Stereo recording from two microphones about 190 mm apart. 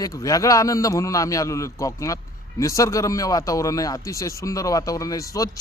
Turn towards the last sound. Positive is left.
turn(degrees=15)  # may be behind; listen again after turning